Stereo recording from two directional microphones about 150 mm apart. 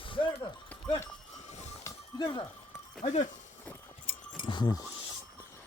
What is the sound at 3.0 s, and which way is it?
Speech, 55° left (ahead or behind).